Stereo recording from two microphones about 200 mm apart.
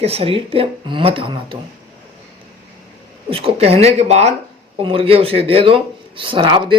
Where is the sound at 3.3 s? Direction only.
30° right (ahead or behind).